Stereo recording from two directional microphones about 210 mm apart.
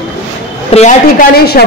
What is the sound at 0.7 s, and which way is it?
Speech, 40° left (ahead or behind).